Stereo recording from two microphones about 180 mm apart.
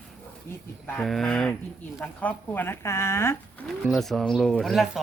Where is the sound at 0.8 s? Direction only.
5° left (ahead or behind).